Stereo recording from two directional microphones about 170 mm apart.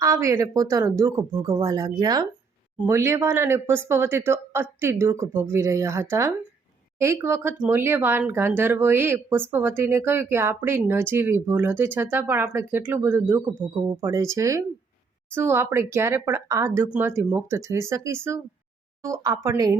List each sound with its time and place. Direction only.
0.0 s speech: 20° right (ahead or behind)